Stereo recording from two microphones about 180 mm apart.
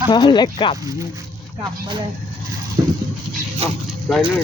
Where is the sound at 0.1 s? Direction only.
25° left (ahead or behind).